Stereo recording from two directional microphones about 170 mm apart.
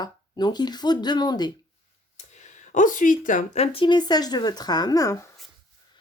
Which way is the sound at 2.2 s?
45° left (ahead or behind).